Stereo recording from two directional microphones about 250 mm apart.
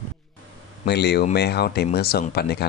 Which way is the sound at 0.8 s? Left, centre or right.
Left.